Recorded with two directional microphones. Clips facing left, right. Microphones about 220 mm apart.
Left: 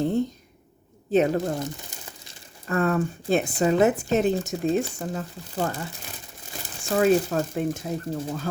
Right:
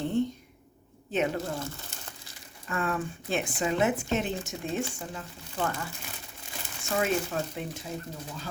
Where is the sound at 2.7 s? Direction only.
40° left (ahead or behind).